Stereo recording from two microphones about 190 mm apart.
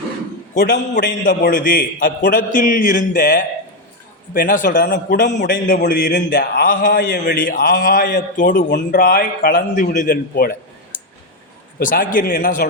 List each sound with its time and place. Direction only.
0.5 s a man's voice: 45° left (ahead or behind)
11.8 s a man's voice: 45° left (ahead or behind)